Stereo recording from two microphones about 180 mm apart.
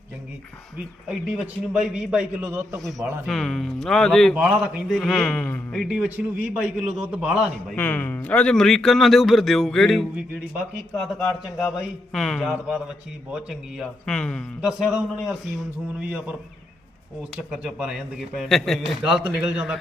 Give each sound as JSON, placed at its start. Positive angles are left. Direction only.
{"t": 1.3, "sound": "speech", "side_deg": -5}
{"t": 2.8, "sound": "speech", "side_deg": 0}
{"t": 4.9, "sound": "speech", "side_deg": 5}
{"t": 5.9, "sound": "speech", "side_deg": -5}
{"t": 7.8, "sound": "speech", "side_deg": 10}
{"t": 17.3, "sound": "speech", "side_deg": -5}